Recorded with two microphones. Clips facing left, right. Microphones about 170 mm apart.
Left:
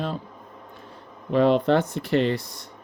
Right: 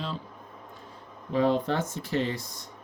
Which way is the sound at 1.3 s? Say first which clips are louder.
Left 6 dB; 70° left (ahead or behind).